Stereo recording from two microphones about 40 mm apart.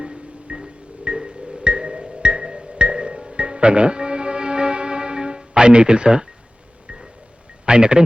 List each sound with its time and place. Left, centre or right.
0.0 s music: right
7.6 s a man's voice: right